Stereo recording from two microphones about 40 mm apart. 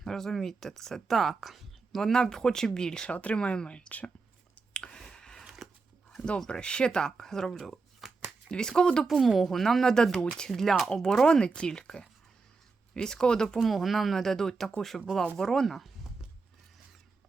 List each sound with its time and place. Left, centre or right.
0.0 s speech: centre; by 4.1 s left
4.7 s a sound: left
5.0 s chewing: centre
6.5 s speech: left
8.0 s shuffling cards: centre
8.4 s speech: left
9.0 s speech: centre; by 10.5 s left
10.5 s speech: centre
13.6 s speech: centre
15.6 s speech: centre